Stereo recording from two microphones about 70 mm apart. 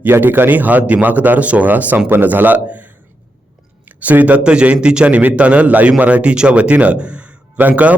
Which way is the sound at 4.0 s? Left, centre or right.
Right.